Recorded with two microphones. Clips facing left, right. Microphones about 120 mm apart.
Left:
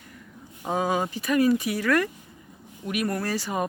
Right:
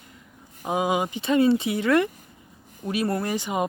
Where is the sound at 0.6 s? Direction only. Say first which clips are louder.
Right 1 dB; 15° right (ahead or behind).